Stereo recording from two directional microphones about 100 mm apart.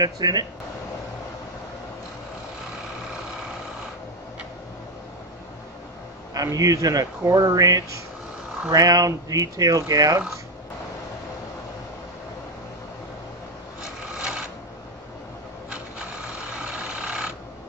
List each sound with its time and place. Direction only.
0.0 s speech: 40° right (ahead or behind)
6.3 s speech: 35° right (ahead or behind)
14.1 s filing: 10° right (ahead or behind)
16.5 s vehicle: 10° right (ahead or behind)